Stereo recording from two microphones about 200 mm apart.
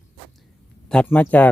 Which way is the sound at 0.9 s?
5° left (ahead or behind).